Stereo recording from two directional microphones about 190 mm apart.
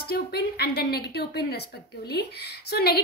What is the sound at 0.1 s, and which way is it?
A woman's voice, 55° left (ahead or behind).